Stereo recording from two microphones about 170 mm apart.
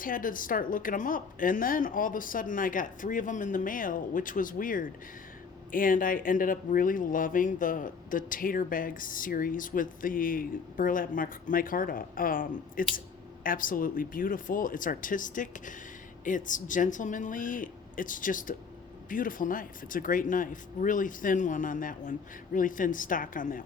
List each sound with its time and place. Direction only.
0.0 s speech: 55° left (ahead or behind)